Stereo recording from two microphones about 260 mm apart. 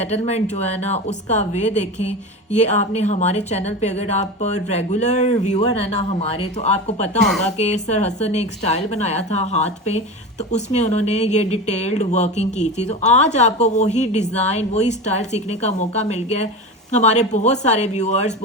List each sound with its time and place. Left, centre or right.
0.0 s speech: left